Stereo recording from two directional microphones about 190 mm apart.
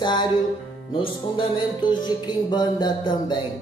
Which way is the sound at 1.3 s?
25° left (ahead or behind).